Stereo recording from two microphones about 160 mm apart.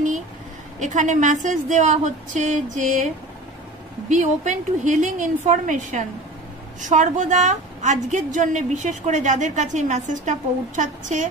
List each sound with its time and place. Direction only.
0.7 s a woman's voice: 50° right (ahead or behind)
4.1 s a woman's voice: 50° right (ahead or behind)